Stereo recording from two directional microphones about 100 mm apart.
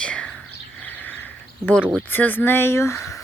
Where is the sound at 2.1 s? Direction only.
20° left (ahead or behind).